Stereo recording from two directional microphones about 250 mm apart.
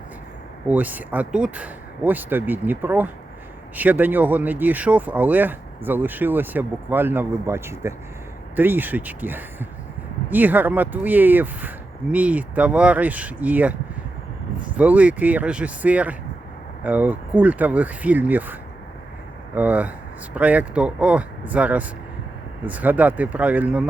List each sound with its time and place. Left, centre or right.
0.7 s speech: centre
19.5 s speech: centre